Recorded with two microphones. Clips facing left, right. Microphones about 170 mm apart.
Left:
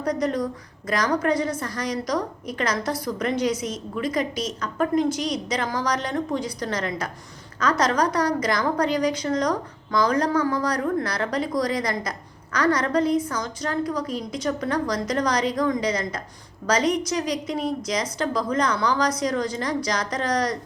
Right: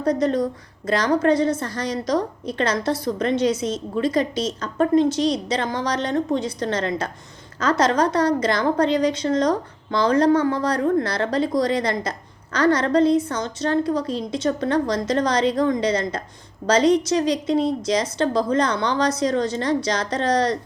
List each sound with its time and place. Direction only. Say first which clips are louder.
0.0 s a woman's voice: right 4 dB; 25° right (ahead or behind)